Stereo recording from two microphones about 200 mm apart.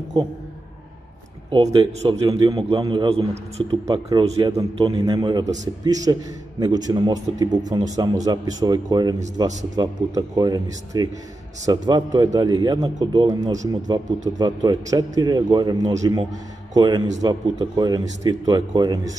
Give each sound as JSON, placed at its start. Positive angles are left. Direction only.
{"t": 0.2, "sound": "speech", "side_deg": -20}
{"t": 1.5, "sound": "speech", "side_deg": -25}